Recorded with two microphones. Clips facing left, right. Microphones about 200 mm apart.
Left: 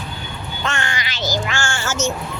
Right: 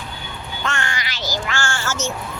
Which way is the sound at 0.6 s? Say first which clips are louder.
Left 1 dB; 20° left (ahead or behind).